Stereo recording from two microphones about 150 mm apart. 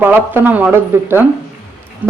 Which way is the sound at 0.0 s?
15° right (ahead or behind).